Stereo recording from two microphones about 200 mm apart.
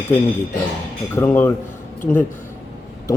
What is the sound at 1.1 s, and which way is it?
Speech, 10° left (ahead or behind).